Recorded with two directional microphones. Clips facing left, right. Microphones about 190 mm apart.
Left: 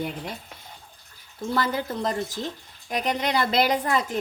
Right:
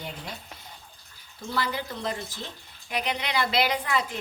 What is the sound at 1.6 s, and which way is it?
A woman's voice, 45° left (ahead or behind).